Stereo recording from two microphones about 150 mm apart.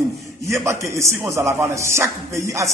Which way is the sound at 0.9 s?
20° right (ahead or behind).